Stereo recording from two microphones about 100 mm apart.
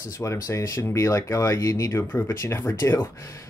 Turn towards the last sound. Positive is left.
turn(degrees=30)  # may be behind; listen again after turning